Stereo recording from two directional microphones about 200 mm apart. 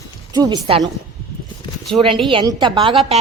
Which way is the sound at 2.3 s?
20° right (ahead or behind).